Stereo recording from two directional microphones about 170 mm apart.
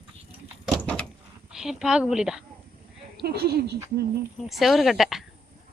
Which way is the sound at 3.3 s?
70° right (ahead or behind).